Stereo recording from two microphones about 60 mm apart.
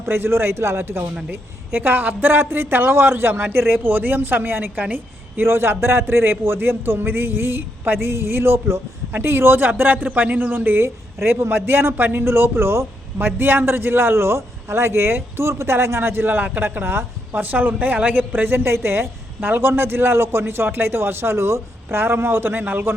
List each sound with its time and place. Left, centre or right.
0.0 s a man's voice: right
5.4 s a man's voice: right
17.4 s a man's voice: right